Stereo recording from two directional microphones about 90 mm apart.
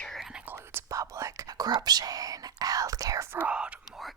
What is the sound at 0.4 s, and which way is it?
Whispering, 25° right (ahead or behind).